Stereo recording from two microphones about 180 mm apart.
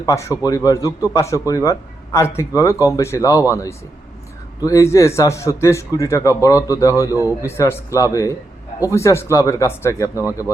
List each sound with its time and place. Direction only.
0.0 s a man's voice: 15° left (ahead or behind)